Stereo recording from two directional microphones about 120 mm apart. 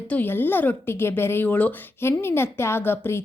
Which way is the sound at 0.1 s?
15° left (ahead or behind).